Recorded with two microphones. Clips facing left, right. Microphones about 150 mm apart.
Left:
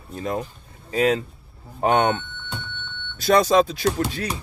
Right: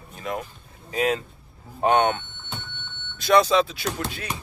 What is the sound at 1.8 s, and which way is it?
Speech, 40° left (ahead or behind).